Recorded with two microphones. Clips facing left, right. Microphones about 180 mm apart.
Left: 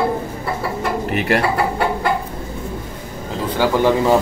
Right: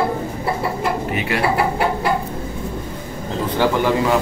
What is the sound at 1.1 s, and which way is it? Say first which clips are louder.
Speech: left 4 dB; 50° left (ahead or behind).